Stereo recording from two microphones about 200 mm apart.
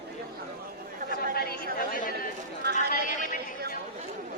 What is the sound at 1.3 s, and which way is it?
Chatter, 50° left (ahead or behind).